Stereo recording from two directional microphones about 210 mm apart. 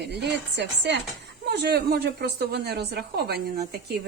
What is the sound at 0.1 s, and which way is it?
Speech, 55° right (ahead or behind).